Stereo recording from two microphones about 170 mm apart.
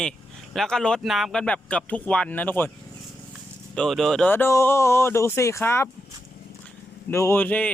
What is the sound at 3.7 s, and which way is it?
Speech, 5° left (ahead or behind).